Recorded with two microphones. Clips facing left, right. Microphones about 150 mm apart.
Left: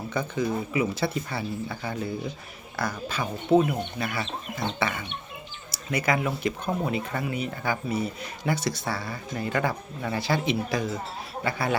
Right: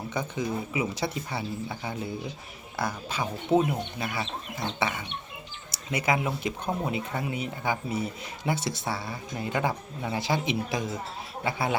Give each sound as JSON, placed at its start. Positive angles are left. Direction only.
{"t": 0.1, "sound": "speech", "side_deg": -20}
{"t": 4.2, "sound": "speech", "side_deg": 0}
{"t": 4.8, "sound": "speech", "side_deg": -20}